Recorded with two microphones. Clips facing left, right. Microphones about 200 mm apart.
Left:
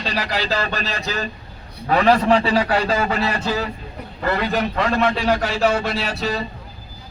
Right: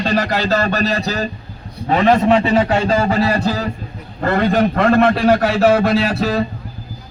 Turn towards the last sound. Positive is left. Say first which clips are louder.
# right 7 dB
turn(degrees=-55)  # may be behind; listen again after turning